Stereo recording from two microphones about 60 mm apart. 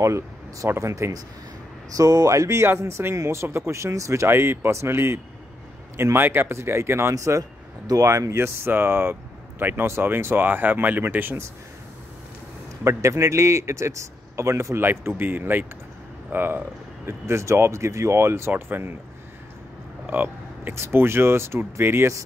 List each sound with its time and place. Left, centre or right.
0.0 s a man's voice: right
2.0 s a man's voice: right
4.3 s speech: right
7.2 s a man's voice: right
8.4 s speech: right
12.8 s a man's voice: right
14.8 s speech: right
18.5 s speech: right
20.1 s a sound: right
20.7 s speech: right